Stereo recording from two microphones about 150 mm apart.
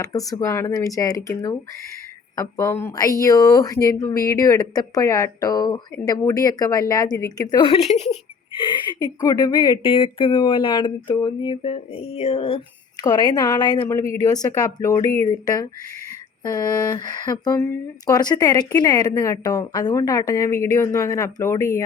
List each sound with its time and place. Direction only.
0.0 s speech: 25° left (ahead or behind)
2.3 s speech: 20° left (ahead or behind)
7.6 s a woman's voice: 40° left (ahead or behind)
8.5 s a woman's voice: 30° left (ahead or behind)
13.0 s speech: 25° left (ahead or behind)